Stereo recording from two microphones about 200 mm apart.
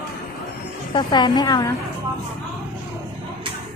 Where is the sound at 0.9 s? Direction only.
20° left (ahead or behind).